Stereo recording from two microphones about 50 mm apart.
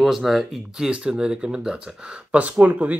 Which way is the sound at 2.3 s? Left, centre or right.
Right.